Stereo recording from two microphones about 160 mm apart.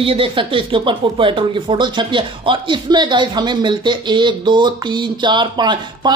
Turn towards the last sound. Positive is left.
turn(degrees=-30)  # may be behind; listen again after turning